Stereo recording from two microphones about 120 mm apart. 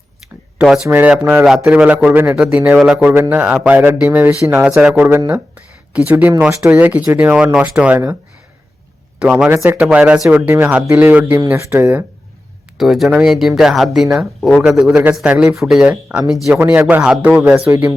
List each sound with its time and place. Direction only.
0.9 s speech: 15° right (ahead or behind)
1.5 s speech: 10° right (ahead or behind)
5.0 s speech: 25° right (ahead or behind)
6.1 s speech: 15° right (ahead or behind)
7.3 s speech: 5° right (ahead or behind)
9.1 s speech: 5° right (ahead or behind); by 12.0 s 20° right (ahead or behind)
12.7 s speech: centre (ahead or behind)